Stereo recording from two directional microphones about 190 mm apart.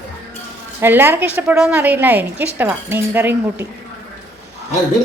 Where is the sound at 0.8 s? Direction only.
10° right (ahead or behind).